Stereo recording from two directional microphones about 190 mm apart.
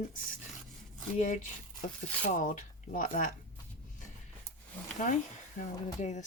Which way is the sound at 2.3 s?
40° left (ahead or behind).